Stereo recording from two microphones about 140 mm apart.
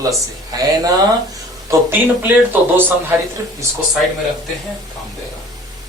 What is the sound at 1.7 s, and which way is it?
Speech, 20° right (ahead or behind).